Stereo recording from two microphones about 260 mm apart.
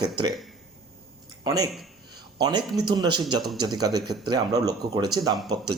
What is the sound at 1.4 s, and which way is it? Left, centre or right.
Speech, centre.